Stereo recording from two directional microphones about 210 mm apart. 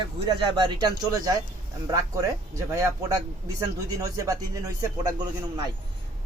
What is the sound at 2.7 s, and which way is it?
Speech, 15° right (ahead or behind).